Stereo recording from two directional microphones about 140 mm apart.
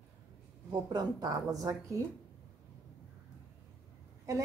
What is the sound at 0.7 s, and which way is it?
Speech, 30° right (ahead or behind).